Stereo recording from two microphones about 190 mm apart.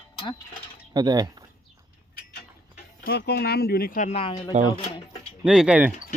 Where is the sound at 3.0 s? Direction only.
60° left (ahead or behind); by 5.0 s 30° left (ahead or behind).